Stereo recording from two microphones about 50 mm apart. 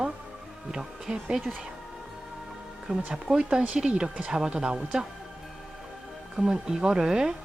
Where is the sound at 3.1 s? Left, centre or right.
Centre.